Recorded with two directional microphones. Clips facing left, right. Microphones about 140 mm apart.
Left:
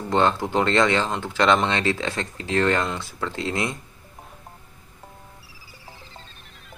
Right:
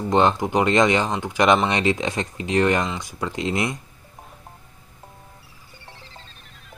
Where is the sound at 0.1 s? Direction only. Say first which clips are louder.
Right 2 dB; 15° right (ahead or behind).